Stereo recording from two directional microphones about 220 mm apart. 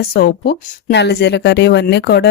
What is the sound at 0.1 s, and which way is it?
Speech, 45° left (ahead or behind).